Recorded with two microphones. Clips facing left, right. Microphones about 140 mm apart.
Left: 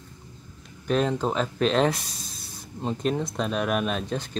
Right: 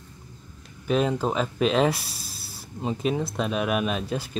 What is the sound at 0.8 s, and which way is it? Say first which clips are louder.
Speech: right 1 dB; 5° right (ahead or behind).